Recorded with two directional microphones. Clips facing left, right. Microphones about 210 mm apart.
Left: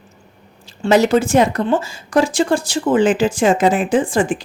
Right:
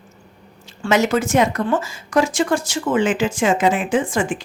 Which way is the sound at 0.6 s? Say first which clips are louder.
Left 4 dB; 35° left (ahead or behind).